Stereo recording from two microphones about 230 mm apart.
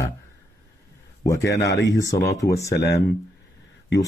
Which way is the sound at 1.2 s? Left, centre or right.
Centre.